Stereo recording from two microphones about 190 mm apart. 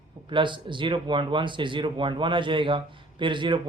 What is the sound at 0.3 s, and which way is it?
Speech, 25° right (ahead or behind).